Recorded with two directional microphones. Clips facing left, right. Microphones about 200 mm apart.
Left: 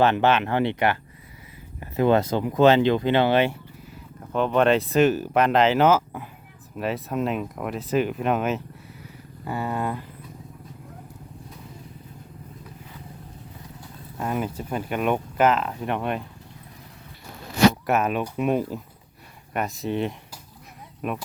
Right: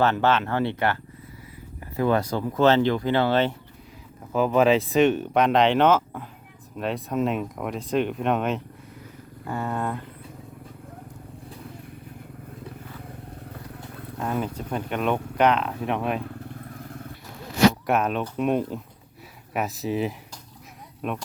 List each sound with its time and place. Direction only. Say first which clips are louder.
0.0 s speech: left 2 dB; 15° left (ahead or behind)
4.3 s speech: right 1 dB; 5° right (ahead or behind)
14.2 s speech: left 1 dB; 5° left (ahead or behind)
16.6 s vehicle: right 8 dB; 50° right (ahead or behind)
17.8 s speech: left 1 dB; 5° left (ahead or behind)